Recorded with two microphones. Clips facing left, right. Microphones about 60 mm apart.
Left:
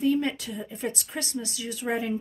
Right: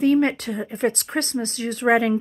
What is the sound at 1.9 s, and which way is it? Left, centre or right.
Speech, right.